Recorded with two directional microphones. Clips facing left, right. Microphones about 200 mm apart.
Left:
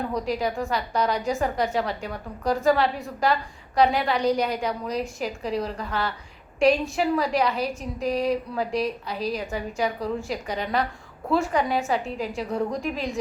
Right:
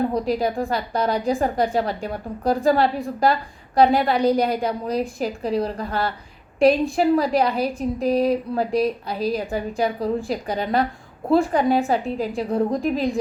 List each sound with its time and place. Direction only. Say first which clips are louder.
0.1 s a woman's voice: right 4 dB; 35° right (ahead or behind)